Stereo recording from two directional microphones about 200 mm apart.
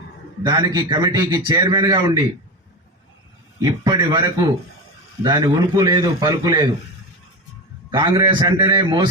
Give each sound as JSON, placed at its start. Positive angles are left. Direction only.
{"t": 0.4, "sound": "a man's voice", "side_deg": -20}
{"t": 3.6, "sound": "a man's voice", "side_deg": -20}
{"t": 7.9, "sound": "a man's voice", "side_deg": -20}